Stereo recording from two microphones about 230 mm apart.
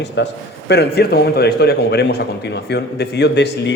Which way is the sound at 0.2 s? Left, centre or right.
Left.